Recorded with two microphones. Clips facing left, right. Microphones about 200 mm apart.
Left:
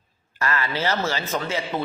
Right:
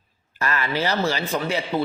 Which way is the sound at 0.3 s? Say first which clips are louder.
Right 1 dB; 15° right (ahead or behind).